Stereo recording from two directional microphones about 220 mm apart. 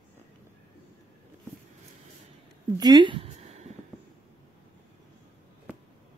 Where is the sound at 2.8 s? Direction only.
20° right (ahead or behind).